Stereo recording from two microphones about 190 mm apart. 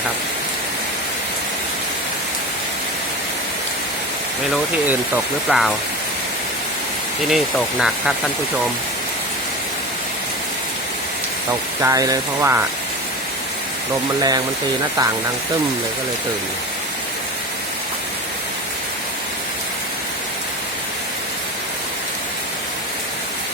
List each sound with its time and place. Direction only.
4.5 s speech: 5° right (ahead or behind)
7.3 s speech: centre (ahead or behind)
11.8 s speech: 15° right (ahead or behind)
14.2 s speech: 20° right (ahead or behind)